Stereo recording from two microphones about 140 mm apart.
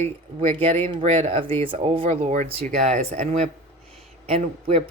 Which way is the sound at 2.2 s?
60° right (ahead or behind).